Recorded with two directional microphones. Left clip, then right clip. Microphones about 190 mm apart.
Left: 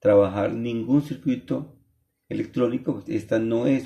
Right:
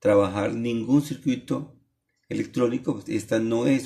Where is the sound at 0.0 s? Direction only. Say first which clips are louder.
Left 2 dB; 15° right (ahead or behind).